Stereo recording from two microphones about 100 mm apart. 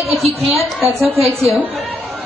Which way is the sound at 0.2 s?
75° right (ahead or behind).